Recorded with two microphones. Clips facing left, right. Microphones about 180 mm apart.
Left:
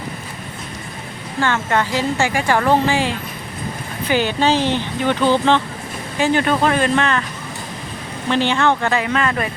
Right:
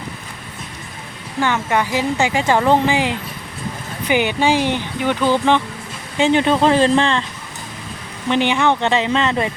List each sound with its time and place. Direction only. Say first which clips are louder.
1.4 s a woman's voice: even; 15° right (ahead or behind)
6.1 s speech: right 2 dB; 20° right (ahead or behind)
8.3 s speech: right 1 dB; 15° right (ahead or behind)